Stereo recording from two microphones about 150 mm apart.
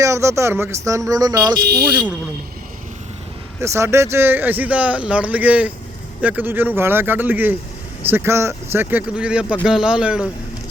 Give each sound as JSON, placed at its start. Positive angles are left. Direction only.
{"t": 0.0, "sound": "speech", "side_deg": -20}
{"t": 1.5, "sound": "speech", "side_deg": -90}
{"t": 3.6, "sound": "speech", "side_deg": -20}